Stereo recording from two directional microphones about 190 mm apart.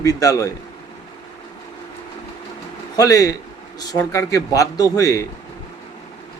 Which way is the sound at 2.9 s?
20° left (ahead or behind).